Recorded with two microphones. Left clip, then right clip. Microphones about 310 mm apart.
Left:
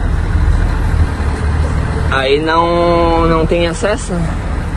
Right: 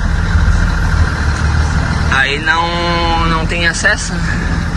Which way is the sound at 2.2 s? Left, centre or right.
Centre.